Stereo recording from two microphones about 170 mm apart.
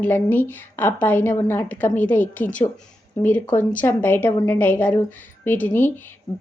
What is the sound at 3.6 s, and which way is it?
A woman's voice, 10° left (ahead or behind).